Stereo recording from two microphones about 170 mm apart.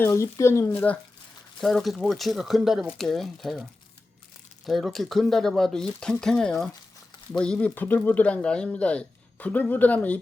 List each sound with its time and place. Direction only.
0.0 s speech: 15° left (ahead or behind)
1.6 s speech: centre (ahead or behind)